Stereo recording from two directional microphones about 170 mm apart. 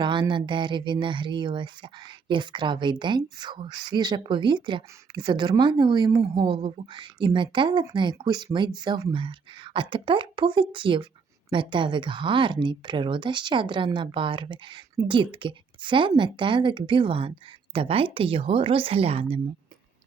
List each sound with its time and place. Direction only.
0.0 s a woman's voice: 30° right (ahead or behind)